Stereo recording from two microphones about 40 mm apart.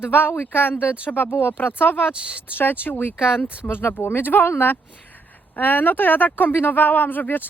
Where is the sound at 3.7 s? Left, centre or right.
Left.